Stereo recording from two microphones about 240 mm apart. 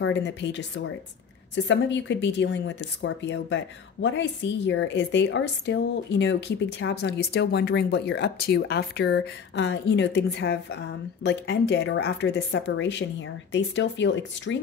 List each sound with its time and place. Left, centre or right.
0.0 s speech: left